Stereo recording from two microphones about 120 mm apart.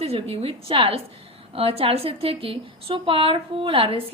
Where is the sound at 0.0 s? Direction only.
55° right (ahead or behind).